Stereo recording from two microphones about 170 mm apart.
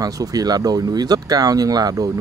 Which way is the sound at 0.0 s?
20° right (ahead or behind).